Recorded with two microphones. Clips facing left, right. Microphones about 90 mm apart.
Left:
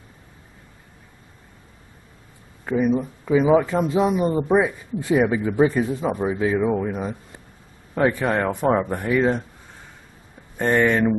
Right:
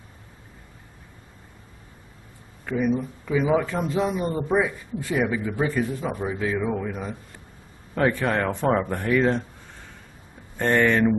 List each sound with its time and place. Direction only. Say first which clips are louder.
2.6 s a man's voice: left 3 dB; 25° left (ahead or behind)
7.9 s speech: left 2 dB; 10° left (ahead or behind)
10.6 s speech: left 1 dB; 15° left (ahead or behind)